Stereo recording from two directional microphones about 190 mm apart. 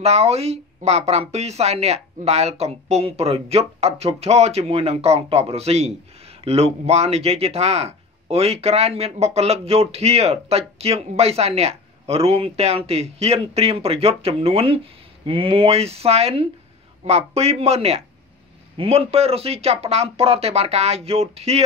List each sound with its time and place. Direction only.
0.0 s speech: 35° right (ahead or behind)